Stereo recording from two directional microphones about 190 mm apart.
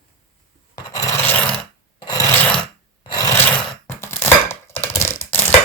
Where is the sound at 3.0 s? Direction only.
20° left (ahead or behind).